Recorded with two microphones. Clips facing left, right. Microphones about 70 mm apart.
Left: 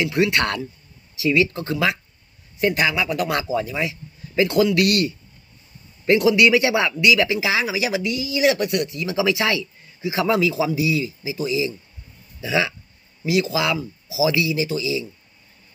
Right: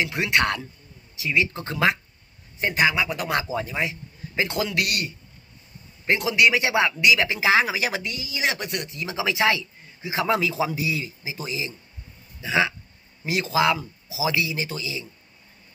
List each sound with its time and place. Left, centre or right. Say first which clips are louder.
0.0 s speech: left 3 dB; right